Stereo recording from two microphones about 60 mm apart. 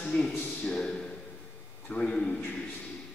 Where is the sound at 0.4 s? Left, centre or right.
Left.